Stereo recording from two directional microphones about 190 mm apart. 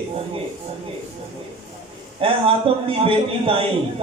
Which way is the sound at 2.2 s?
30° right (ahead or behind).